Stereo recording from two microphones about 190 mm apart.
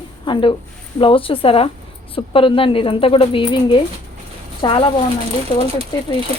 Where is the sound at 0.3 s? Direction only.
25° left (ahead or behind).